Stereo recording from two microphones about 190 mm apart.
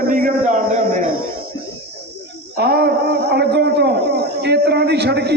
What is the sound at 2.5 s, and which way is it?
A man's voice, 55° right (ahead or behind).